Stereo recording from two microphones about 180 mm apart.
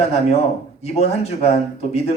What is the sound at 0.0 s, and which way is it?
Speech, 35° left (ahead or behind).